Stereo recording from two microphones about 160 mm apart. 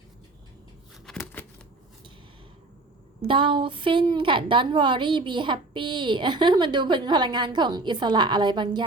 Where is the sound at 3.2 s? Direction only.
30° right (ahead or behind).